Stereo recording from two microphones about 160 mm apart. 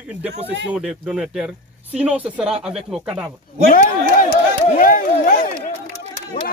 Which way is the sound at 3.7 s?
60° left (ahead or behind).